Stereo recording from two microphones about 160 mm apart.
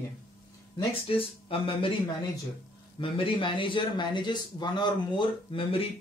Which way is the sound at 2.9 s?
30° left (ahead or behind).